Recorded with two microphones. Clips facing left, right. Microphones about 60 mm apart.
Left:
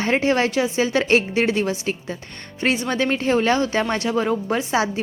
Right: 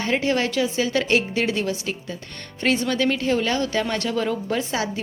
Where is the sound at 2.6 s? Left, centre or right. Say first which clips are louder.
Even; centre.